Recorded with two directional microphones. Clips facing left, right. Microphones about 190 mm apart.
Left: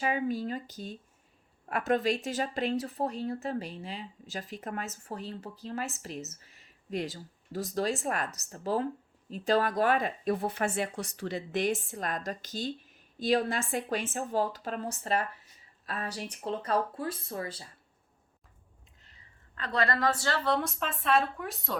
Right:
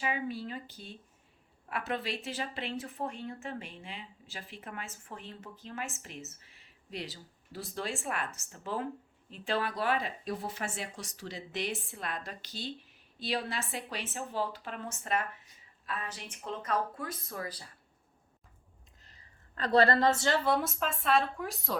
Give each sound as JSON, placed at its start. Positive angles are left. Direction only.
{"t": 0.0, "sound": "speech", "side_deg": 45}
{"t": 19.0, "sound": "a woman's voice", "side_deg": -40}
{"t": 20.5, "sound": "a woman's voice", "side_deg": -5}